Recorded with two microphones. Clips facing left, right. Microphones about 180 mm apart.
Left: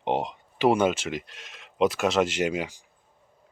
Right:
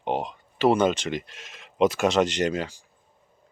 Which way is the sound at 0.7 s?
10° left (ahead or behind).